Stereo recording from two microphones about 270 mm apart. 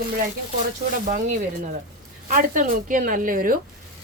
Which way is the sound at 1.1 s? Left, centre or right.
Right.